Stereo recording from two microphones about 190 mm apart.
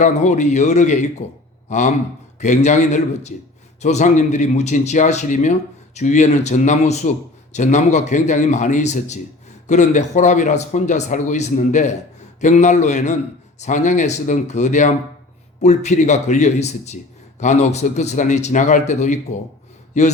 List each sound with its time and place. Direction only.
0.0 s speech: 40° left (ahead or behind)